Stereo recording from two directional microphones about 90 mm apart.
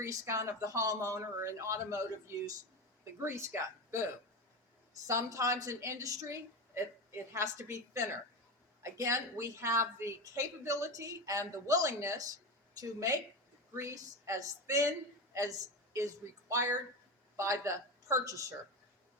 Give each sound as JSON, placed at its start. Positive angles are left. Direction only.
{"t": 0.0, "sound": "a woman's voice", "side_deg": -35}